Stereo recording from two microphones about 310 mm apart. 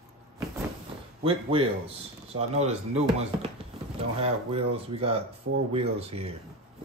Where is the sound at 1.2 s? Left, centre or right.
Centre.